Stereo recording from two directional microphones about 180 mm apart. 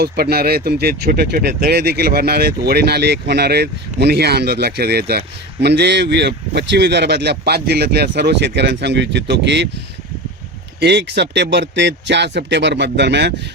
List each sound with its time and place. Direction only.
0.0 s speech: 60° right (ahead or behind); by 9.6 s 75° right (ahead or behind)
10.8 s speech: 70° right (ahead or behind)